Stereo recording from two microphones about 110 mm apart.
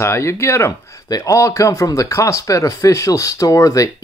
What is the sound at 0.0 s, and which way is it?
Speech, 25° left (ahead or behind).